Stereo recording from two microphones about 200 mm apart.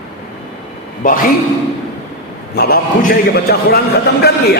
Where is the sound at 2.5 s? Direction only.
50° left (ahead or behind).